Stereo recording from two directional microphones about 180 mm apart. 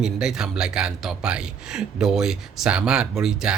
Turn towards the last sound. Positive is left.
turn(degrees=-5)  # may be behind; listen again after turning